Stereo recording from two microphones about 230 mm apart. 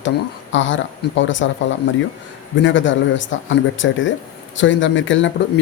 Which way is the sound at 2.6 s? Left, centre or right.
Left.